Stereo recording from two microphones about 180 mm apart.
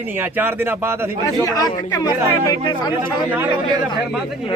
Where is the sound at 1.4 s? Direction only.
20° left (ahead or behind).